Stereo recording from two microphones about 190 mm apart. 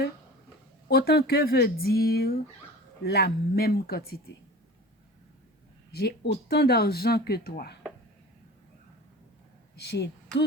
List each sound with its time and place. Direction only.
0.9 s speech: 55° left (ahead or behind)
5.9 s speech: 55° left (ahead or behind)
9.7 s speech: 60° left (ahead or behind)